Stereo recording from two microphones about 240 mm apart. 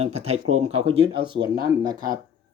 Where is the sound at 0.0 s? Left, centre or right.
Right.